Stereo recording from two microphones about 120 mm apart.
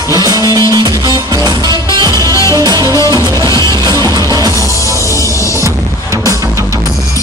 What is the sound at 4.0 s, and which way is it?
Music, 30° right (ahead or behind).